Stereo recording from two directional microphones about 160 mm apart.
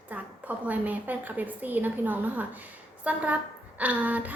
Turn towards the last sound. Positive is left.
turn(degrees=-10)  # may be behind; listen again after turning